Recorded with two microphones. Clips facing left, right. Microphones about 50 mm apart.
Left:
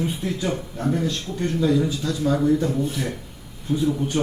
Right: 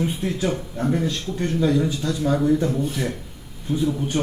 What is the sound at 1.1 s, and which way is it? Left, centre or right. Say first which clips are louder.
Speech: right 1 dB; right.